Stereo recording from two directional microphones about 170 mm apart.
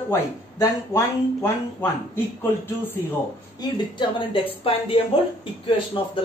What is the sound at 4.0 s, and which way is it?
Speech, 30° left (ahead or behind).